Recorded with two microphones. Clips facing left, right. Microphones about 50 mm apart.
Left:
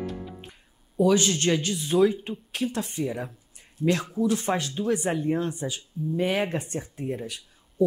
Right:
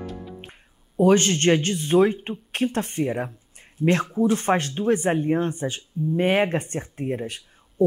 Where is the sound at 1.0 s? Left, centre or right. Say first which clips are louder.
Right 4 dB; right.